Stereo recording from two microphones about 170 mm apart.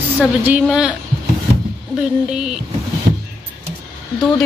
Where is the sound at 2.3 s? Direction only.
5° right (ahead or behind).